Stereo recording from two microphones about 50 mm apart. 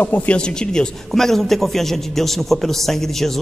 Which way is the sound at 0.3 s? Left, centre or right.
Left.